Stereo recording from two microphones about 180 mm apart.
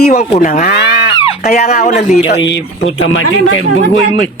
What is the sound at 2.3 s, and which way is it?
Speech, 85° left.